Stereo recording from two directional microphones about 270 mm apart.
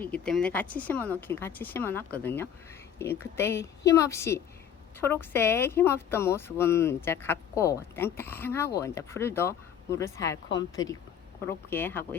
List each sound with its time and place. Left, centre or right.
0.0 s speech: centre